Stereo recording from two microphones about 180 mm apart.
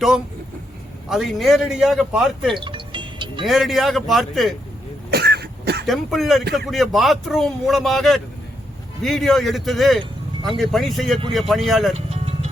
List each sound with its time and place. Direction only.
1.1 s a man's voice: centre (ahead or behind)
2.6 s music: 25° right (ahead or behind)
3.4 s a man's voice: centre (ahead or behind)
5.1 s throat clearing: 65° right (ahead or behind)
5.8 s a man's voice: centre (ahead or behind)
11.9 s music: 35° right (ahead or behind)